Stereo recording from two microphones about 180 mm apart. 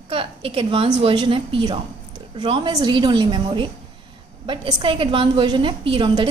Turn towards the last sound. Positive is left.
turn(degrees=-25)  # may be behind; listen again after turning